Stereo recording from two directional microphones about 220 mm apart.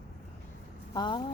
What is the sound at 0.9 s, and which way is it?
Speech, 20° left (ahead or behind).